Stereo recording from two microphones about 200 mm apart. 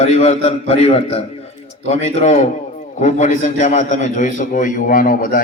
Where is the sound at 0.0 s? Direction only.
35° left (ahead or behind).